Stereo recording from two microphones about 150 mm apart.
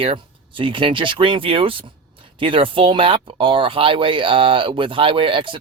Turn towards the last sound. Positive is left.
turn(degrees=-35)  # may be behind; listen again after turning